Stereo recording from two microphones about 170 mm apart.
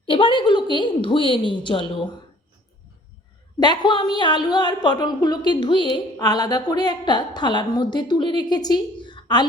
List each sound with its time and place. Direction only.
0.0 s a woman's voice: 30° left (ahead or behind)
3.6 s a woman's voice: 25° left (ahead or behind)